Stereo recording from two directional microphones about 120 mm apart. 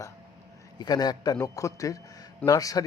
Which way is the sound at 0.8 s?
35° left (ahead or behind).